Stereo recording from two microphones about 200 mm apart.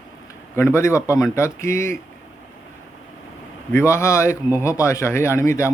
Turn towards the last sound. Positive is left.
turn(degrees=15)  # may be behind; listen again after turning